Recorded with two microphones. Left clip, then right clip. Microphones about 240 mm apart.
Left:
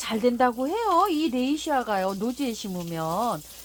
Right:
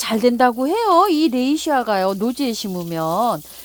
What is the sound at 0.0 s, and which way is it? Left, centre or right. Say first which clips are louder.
Speech: right 7 dB; right.